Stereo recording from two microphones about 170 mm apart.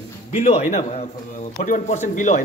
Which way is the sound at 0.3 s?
35° left (ahead or behind).